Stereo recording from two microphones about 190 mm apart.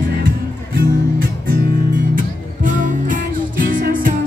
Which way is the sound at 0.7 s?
50° right (ahead or behind).